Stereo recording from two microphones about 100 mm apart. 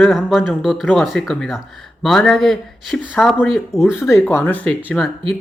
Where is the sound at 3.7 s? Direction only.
25° left (ahead or behind); by 5.0 s 10° left (ahead or behind).